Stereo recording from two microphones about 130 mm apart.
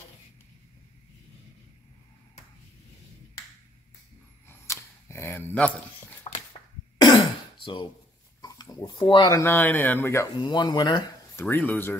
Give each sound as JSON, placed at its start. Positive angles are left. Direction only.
{"t": 4.5, "sound": "cap gun", "side_deg": 20}
{"t": 6.3, "sound": "a sound", "side_deg": 45}
{"t": 7.0, "sound": "throat clearing", "side_deg": 35}
{"t": 8.4, "sound": "a sound", "side_deg": 30}
{"t": 9.3, "sound": "speech", "side_deg": 15}
{"t": 10.3, "sound": "speech", "side_deg": 35}
{"t": 11.3, "sound": "speech", "side_deg": 15}